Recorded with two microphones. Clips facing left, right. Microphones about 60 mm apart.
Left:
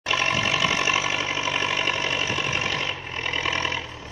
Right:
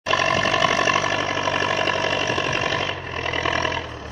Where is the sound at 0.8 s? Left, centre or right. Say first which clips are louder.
Right 4 dB; right.